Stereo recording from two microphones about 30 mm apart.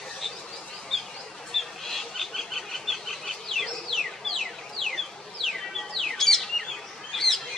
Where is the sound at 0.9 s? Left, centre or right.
Centre.